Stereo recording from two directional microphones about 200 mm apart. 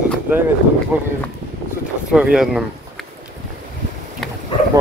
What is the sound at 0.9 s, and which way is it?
Speech, 10° right (ahead or behind).